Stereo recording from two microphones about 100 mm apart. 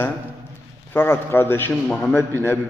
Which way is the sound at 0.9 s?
25° left (ahead or behind).